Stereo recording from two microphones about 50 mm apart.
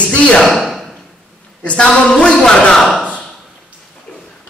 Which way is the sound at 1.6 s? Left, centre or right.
Left.